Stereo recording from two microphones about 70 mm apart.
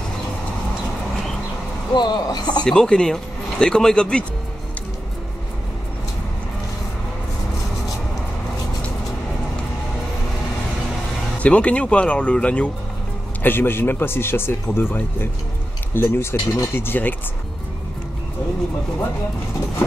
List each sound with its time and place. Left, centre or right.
2.0 s speech: left
2.6 s speech: centre
11.3 s speech: centre
13.4 s speech: left